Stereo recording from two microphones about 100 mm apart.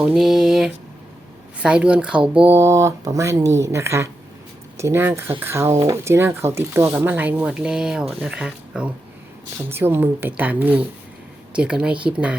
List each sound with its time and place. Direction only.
0.2 s a sound: 5° right (ahead or behind)
1.6 s speech: 10° right (ahead or behind)
2.5 s speech: 25° right (ahead or behind); by 8.9 s 10° right (ahead or behind)
9.6 s speech: 25° right (ahead or behind)